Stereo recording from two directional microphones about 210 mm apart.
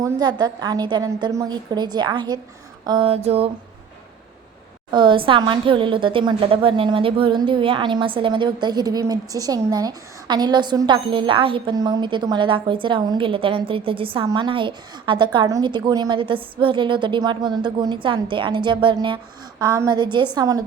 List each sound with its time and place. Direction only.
0.0 s a woman's voice: 20° right (ahead or behind)
4.9 s a woman's voice: 20° right (ahead or behind)